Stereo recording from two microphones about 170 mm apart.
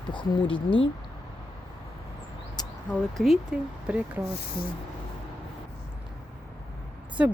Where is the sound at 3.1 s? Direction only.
Centre (ahead or behind).